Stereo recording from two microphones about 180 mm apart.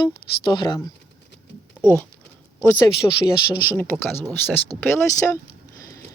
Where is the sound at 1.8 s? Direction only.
10° left (ahead or behind).